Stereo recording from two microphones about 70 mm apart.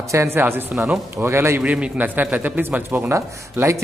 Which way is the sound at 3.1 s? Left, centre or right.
Right.